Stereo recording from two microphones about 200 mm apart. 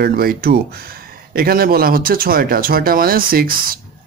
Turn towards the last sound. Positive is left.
turn(degrees=-45)  # may be behind; listen again after turning